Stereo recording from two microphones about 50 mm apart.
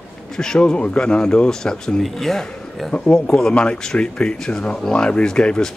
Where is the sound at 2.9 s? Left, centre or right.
Centre.